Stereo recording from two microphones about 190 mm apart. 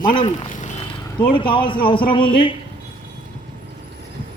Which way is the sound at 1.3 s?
25° left (ahead or behind).